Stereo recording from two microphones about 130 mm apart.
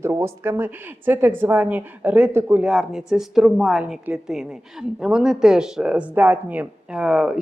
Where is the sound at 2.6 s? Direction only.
5° right (ahead or behind).